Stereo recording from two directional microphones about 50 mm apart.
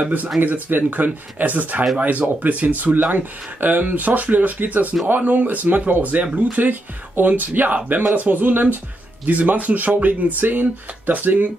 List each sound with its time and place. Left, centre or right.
0.0 s speech: right